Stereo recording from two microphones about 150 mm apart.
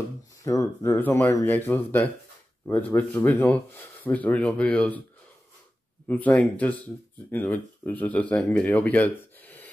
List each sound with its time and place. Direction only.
0.4 s speech: 20° left (ahead or behind)
6.0 s speech: 10° left (ahead or behind)